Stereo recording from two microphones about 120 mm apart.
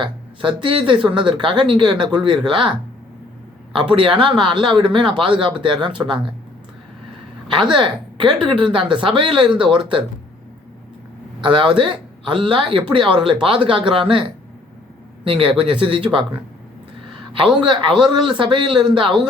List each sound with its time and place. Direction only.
0.0 s a man's voice: 45° right (ahead or behind)
7.4 s a woman's voice: 40° right (ahead or behind)
11.3 s speech: 40° right (ahead or behind)
17.3 s speech: 40° right (ahead or behind)